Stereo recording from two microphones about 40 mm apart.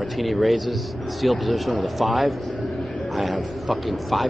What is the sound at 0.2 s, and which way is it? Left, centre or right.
A man's voice, centre.